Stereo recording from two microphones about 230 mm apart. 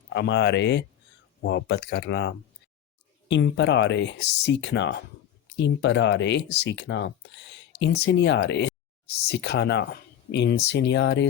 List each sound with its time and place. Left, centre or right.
0.1 s speech: left